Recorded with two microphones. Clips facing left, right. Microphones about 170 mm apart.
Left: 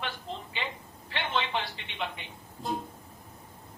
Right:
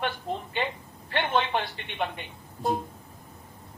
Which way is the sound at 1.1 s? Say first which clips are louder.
Right 5 dB; 50° right (ahead or behind).